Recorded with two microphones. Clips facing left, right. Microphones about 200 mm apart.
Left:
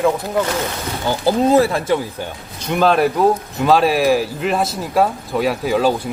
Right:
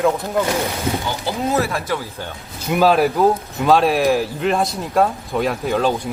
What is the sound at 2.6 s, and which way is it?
Speech, 5° right (ahead or behind).